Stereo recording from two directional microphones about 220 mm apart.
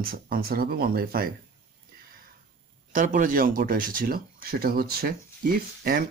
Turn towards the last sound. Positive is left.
turn(degrees=-40)  # may be behind; listen again after turning